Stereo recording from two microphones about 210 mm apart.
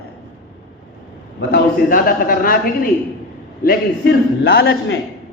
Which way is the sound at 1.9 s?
40° left (ahead or behind).